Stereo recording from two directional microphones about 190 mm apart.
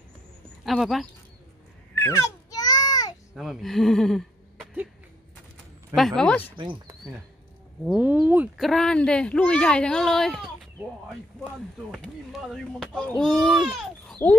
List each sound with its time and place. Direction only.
0.7 s a child's voice: centre (ahead or behind)
2.0 s a sound: 15° left (ahead or behind)
3.3 s speech: centre (ahead or behind)
5.9 s a child's voice: centre (ahead or behind)
6.5 s speech: 25° right (ahead or behind)
7.8 s a child's voice: 5° right (ahead or behind)